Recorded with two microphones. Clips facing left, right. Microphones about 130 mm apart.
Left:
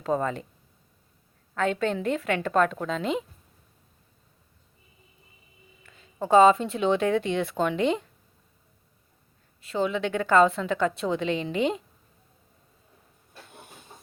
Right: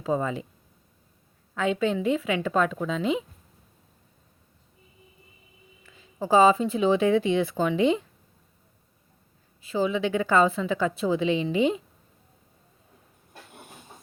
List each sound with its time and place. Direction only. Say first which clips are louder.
0.0 s a woman's voice: even; 5° right (ahead or behind)
1.5 s a woman's voice: right 1 dB; 5° right (ahead or behind)
5.8 s a woman's voice: even; 5° right (ahead or behind)
9.6 s a woman's voice: right 1 dB; 5° right (ahead or behind)